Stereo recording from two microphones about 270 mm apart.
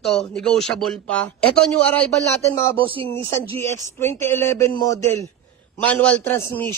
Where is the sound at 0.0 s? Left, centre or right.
Centre.